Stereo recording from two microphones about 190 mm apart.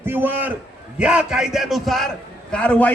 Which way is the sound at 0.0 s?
10° right (ahead or behind).